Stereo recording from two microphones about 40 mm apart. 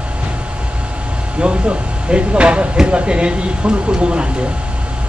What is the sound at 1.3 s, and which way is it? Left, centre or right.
Speech, right.